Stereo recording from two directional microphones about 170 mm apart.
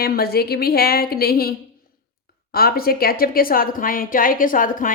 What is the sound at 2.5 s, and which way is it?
A woman's voice, 65° left (ahead or behind).